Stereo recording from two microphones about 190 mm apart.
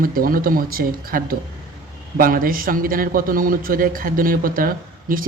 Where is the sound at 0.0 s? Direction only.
50° right (ahead or behind).